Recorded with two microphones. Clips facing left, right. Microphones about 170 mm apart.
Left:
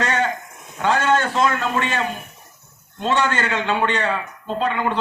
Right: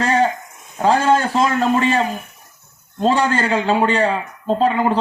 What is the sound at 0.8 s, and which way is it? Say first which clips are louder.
A man's voice: right 4 dB; 35° right (ahead or behind).